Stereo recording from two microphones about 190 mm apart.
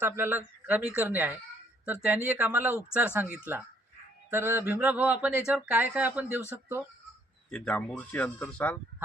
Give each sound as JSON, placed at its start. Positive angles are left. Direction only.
{"t": 0.0, "sound": "speech", "side_deg": -10}
{"t": 7.5, "sound": "speech", "side_deg": 5}